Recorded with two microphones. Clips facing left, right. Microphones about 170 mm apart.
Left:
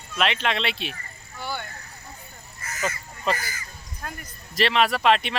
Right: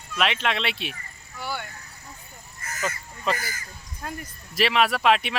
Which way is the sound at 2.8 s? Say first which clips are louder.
Left 1 dB; centre (ahead or behind).